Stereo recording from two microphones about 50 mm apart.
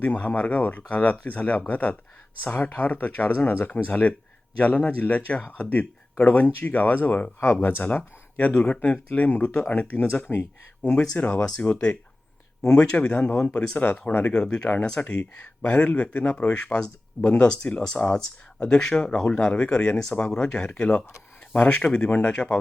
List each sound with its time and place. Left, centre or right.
0.0 s speech: left
7.3 s speech: left
11.1 s speech: left
14.4 s speech: centre
14.9 s speech: left